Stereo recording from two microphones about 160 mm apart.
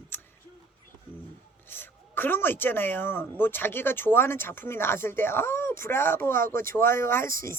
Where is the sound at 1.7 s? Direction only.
15° left (ahead or behind).